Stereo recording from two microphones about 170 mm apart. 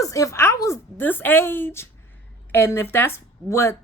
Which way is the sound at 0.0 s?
20° left (ahead or behind).